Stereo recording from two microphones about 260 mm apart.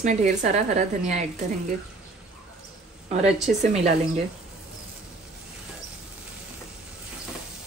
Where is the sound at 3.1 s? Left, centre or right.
Right.